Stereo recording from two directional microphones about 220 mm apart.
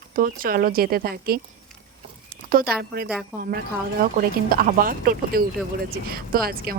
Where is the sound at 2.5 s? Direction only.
45° right (ahead or behind).